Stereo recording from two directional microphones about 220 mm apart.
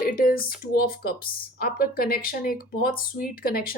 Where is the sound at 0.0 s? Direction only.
40° left (ahead or behind).